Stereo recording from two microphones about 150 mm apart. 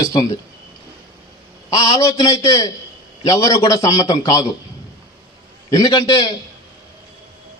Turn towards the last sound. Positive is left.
turn(degrees=25)  # may be behind; listen again after turning